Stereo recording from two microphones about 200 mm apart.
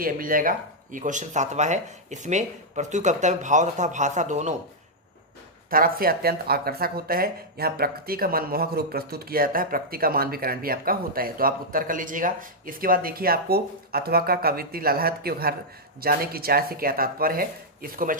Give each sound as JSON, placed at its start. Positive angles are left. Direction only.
{"t": 0.0, "sound": "speech", "side_deg": -45}
{"t": 5.7, "sound": "speech", "side_deg": -45}